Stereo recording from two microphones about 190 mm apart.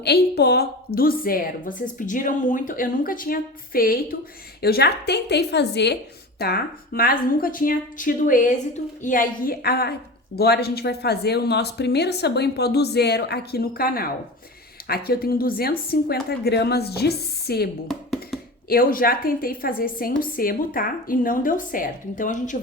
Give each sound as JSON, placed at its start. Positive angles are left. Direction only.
{"t": 0.0, "sound": "a woman's voice", "side_deg": 60}
{"t": 6.4, "sound": "a woman's voice", "side_deg": 55}
{"t": 17.8, "sound": "a sound", "side_deg": 0}
{"t": 18.7, "sound": "a woman's voice", "side_deg": 50}